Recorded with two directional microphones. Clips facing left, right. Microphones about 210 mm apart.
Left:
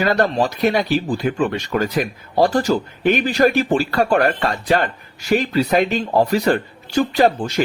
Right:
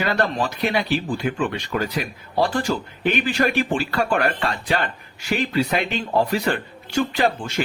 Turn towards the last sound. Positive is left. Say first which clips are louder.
# left 5 dB
turn(degrees=40)  # may be behind; listen again after turning